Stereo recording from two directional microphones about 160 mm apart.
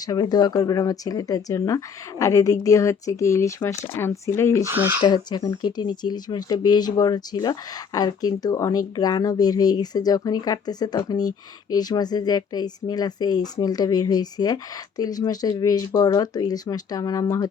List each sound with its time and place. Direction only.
0.0 s speech: 25° left (ahead or behind)
4.6 s speech: 15° right (ahead or behind)
5.0 s speech: 25° left (ahead or behind)